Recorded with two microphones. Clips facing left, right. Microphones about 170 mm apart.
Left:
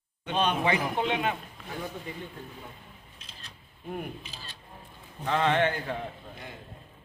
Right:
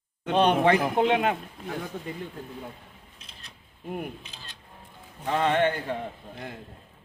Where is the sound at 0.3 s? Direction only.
65° right (ahead or behind).